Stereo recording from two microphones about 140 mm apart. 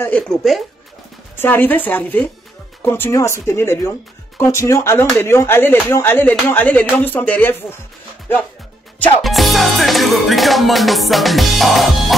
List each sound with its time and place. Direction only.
0.0 s music: 5° left (ahead or behind)
1.3 s speech: 15° left (ahead or behind)
9.2 s music: centre (ahead or behind)